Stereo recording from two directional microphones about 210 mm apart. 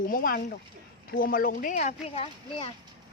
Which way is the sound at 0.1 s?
45° left (ahead or behind).